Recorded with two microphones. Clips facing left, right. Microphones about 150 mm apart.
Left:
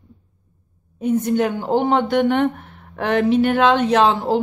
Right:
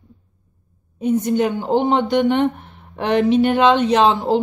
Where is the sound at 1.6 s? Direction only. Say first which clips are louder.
Right 1 dB; 10° left (ahead or behind).